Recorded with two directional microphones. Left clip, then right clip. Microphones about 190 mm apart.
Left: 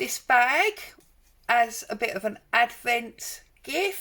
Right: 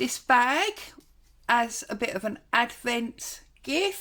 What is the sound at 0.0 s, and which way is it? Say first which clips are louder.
Speech: left 1 dB; 45° right (ahead or behind).